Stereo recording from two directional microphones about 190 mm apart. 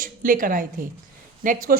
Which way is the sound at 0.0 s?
45° right (ahead or behind).